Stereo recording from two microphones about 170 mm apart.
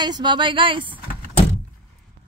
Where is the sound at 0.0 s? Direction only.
25° right (ahead or behind).